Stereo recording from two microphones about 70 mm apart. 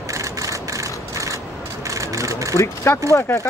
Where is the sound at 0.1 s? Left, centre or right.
Right.